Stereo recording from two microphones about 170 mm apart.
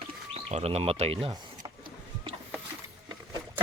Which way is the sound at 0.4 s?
35° right (ahead or behind).